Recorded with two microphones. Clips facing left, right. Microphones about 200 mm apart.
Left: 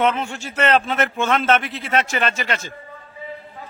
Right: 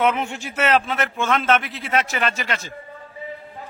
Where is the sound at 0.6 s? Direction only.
Centre (ahead or behind).